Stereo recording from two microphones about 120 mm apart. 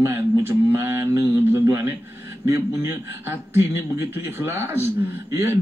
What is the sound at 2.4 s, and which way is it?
A man's voice, 25° right (ahead or behind).